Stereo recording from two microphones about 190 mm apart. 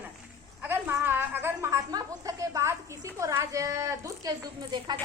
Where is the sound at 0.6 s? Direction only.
10° right (ahead or behind).